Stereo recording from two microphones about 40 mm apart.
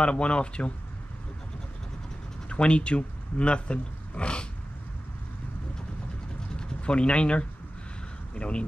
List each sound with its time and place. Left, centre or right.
0.0 s speech: left
2.5 s speech: left
6.5 s a sound: left
8.4 s speech: left